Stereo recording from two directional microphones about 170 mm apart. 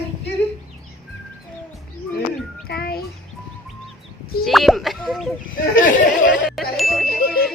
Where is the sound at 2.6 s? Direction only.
65° left (ahead or behind).